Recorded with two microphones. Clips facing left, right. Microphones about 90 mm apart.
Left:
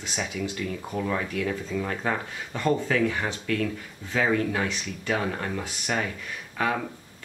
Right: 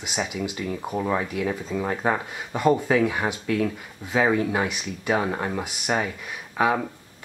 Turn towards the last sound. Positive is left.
turn(degrees=-15)  # may be behind; listen again after turning